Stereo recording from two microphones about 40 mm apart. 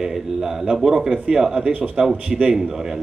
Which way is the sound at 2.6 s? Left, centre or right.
Centre.